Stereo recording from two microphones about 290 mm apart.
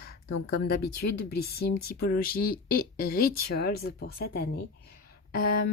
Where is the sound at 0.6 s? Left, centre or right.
Left.